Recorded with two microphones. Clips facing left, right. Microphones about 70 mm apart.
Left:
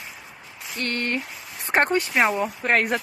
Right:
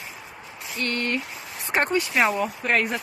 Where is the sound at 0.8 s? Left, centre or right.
Left.